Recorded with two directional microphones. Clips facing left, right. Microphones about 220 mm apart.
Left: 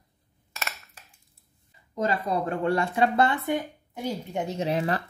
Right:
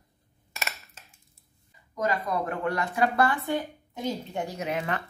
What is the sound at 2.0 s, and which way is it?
Speech, 30° left (ahead or behind).